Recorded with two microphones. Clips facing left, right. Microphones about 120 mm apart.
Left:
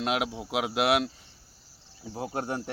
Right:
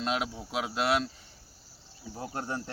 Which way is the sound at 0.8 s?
70° left (ahead or behind).